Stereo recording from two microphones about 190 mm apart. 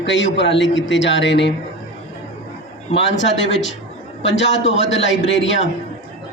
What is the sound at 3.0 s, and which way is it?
A man's voice, 70° left (ahead or behind).